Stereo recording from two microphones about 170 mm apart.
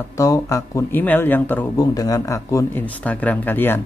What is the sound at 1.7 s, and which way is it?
Speech, 20° left (ahead or behind).